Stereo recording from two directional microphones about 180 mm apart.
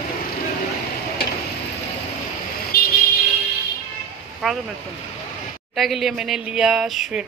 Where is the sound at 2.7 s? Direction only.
60° left (ahead or behind).